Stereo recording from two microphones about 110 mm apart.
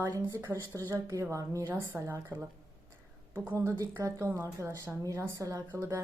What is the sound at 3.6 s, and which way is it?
A woman's voice, 25° right (ahead or behind).